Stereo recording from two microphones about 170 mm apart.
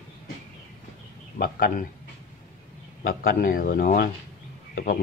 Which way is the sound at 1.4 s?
55° left (ahead or behind).